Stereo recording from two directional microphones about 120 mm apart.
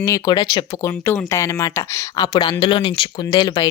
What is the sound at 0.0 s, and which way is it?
Speech, 30° left (ahead or behind).